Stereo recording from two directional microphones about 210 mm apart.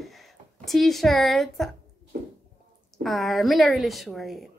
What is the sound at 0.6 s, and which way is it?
A woman's voice, centre (ahead or behind).